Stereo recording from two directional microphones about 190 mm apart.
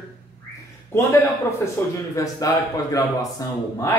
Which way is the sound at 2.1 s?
15° left (ahead or behind).